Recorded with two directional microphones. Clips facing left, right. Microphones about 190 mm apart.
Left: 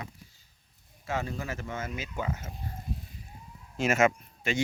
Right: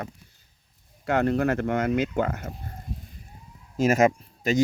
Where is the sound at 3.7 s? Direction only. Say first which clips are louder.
Right 5 dB; 40° right (ahead or behind).